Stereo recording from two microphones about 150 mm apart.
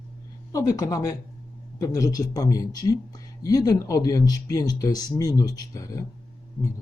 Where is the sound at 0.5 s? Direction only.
20° left (ahead or behind).